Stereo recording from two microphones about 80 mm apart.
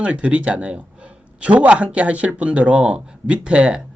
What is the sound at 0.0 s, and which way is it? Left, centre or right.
Speech, centre.